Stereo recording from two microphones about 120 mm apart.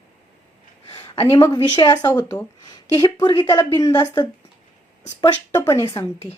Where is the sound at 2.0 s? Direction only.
25° left (ahead or behind).